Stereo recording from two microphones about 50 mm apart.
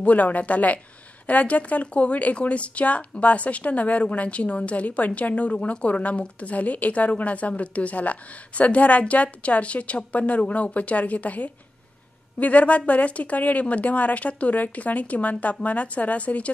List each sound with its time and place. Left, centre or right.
0.0 s speech: left